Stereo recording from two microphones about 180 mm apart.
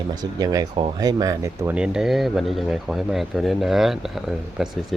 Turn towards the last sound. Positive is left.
turn(degrees=0)  # may be behind; listen again after turning